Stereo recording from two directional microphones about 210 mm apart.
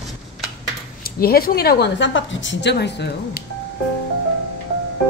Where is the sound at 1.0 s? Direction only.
45° left (ahead or behind).